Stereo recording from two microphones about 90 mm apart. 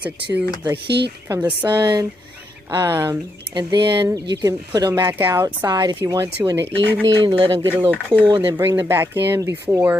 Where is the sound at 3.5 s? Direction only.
55° right (ahead or behind).